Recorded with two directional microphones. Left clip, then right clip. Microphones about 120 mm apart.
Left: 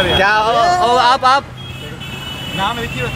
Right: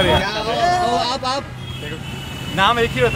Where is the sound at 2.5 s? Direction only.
5° right (ahead or behind).